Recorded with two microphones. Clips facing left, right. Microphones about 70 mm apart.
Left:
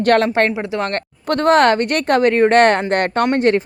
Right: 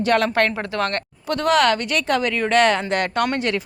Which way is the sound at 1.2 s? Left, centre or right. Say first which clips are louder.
Left 5 dB; left.